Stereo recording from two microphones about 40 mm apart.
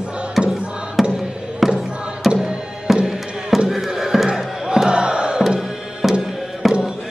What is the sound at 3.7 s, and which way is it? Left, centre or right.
Crowd, centre.